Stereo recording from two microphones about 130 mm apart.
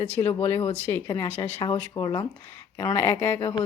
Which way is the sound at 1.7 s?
30° left (ahead or behind).